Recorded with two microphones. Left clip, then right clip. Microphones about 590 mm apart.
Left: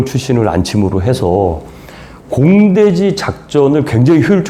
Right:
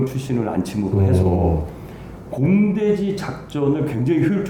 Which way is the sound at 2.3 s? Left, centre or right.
Left.